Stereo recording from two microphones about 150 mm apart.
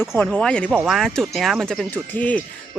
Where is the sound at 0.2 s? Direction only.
5° left (ahead or behind).